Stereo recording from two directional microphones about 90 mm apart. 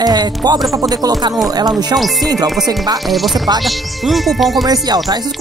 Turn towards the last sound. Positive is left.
turn(degrees=0)  # may be behind; listen again after turning